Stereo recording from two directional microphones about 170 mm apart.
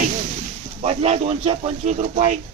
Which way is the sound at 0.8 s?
40° right (ahead or behind).